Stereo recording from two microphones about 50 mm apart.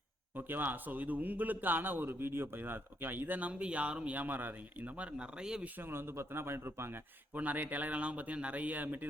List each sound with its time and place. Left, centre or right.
0.3 s a man's voice: right
3.5 s speech: right
5.6 s a man's voice: right
5.9 s a man's voice: right
7.3 s a man's voice: right